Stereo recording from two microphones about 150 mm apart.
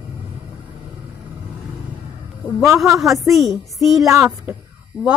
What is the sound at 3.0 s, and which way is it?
A woman's voice, centre (ahead or behind).